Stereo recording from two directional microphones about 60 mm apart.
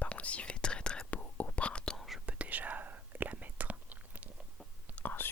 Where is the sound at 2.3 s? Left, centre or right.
Right.